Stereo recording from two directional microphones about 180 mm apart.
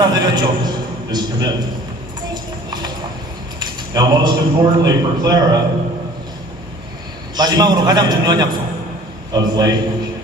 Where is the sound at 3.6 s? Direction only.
20° right (ahead or behind).